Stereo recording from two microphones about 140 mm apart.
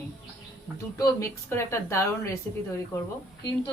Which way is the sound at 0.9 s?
20° left (ahead or behind).